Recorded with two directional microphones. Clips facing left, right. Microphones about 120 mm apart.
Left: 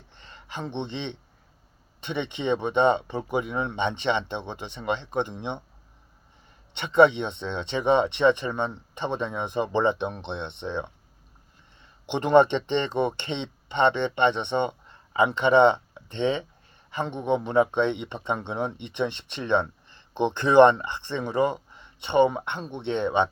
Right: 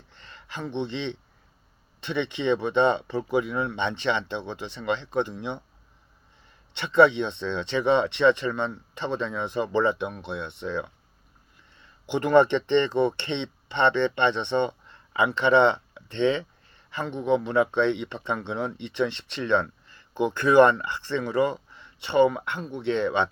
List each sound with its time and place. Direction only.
0.1 s a sound: 20° left (ahead or behind)
2.0 s speech: 15° left (ahead or behind)
6.7 s speech: 15° left (ahead or behind)